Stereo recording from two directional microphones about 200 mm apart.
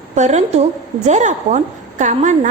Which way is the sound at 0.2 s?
35° right (ahead or behind).